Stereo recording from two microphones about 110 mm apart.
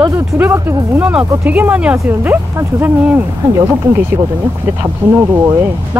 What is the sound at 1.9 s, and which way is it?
Speech, 25° right (ahead or behind).